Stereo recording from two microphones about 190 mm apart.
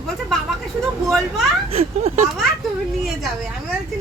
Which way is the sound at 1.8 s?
35° right (ahead or behind).